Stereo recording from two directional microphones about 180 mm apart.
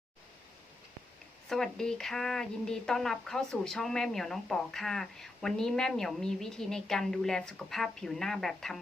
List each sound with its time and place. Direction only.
1.5 s speech: 5° left (ahead or behind)